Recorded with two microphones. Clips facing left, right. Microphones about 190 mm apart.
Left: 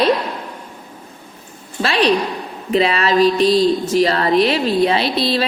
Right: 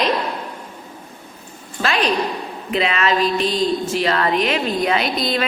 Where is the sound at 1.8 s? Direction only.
35° left (ahead or behind).